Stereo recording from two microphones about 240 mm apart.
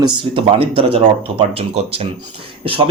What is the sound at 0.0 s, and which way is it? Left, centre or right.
Speech, right.